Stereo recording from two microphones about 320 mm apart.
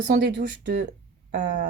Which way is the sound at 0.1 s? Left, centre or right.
Right.